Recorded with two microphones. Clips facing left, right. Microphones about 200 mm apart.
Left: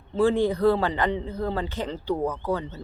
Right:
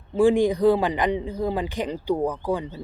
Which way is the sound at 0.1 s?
15° right (ahead or behind).